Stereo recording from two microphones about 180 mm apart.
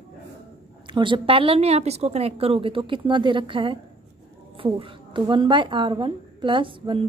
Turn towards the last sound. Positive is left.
turn(degrees=-30)  # may be behind; listen again after turning